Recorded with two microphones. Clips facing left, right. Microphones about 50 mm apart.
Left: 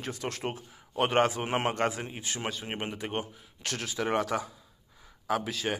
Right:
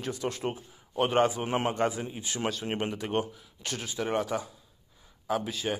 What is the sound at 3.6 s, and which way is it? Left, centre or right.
Speech, left.